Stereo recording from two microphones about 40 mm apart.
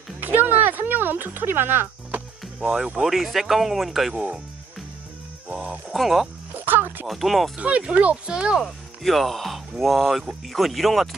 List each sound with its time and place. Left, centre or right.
0.2 s a sound: right
2.6 s speech: centre
3.0 s speech: centre
5.5 s speech: centre
5.9 s speech: centre
6.6 s music: right
7.1 s speech: centre
7.5 s speech: right
8.3 s speech: right
9.0 s speech: centre